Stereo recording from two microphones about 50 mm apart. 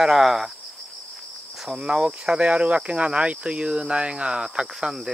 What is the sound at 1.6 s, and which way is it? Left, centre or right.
Speech, centre.